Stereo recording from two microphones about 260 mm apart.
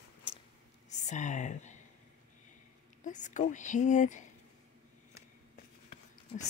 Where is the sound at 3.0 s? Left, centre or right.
Left.